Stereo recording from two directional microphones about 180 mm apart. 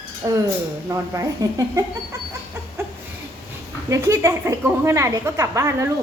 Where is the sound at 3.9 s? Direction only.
15° right (ahead or behind).